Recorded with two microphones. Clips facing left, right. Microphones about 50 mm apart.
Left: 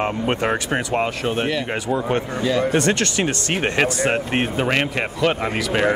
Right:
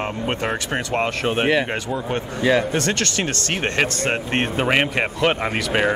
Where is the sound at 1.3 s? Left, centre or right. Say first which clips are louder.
Right 3 dB; right.